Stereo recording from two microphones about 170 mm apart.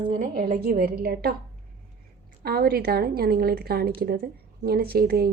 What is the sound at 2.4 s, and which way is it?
A woman's voice, 65° right (ahead or behind).